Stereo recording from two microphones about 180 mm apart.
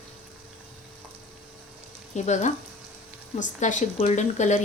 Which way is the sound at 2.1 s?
40° left (ahead or behind).